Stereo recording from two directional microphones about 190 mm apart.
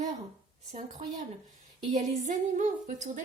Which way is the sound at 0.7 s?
40° right (ahead or behind).